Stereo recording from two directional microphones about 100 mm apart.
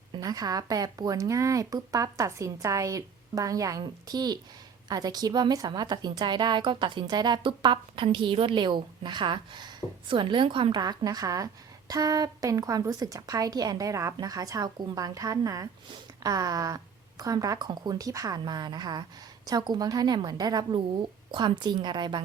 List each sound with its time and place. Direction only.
0.2 s a woman's voice: 40° right (ahead or behind)